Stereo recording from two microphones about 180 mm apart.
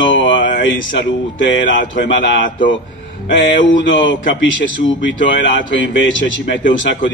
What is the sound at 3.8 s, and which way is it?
Speech, 90° left.